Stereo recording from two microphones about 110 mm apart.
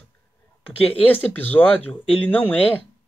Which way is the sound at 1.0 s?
15° left (ahead or behind).